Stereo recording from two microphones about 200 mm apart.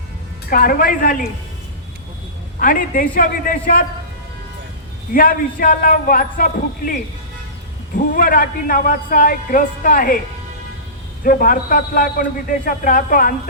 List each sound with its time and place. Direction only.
0.5 s a man's voice: 45° left (ahead or behind)
2.6 s a man's voice: 45° left (ahead or behind)
5.1 s a man's voice: 45° left (ahead or behind)
11.2 s a man's voice: 45° left (ahead or behind)